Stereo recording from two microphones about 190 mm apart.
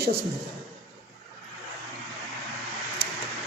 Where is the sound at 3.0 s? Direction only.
55° right (ahead or behind).